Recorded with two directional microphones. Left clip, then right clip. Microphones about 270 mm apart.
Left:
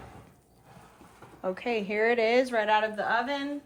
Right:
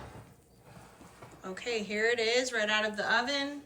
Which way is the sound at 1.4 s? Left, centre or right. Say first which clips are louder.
Left 5 dB; centre.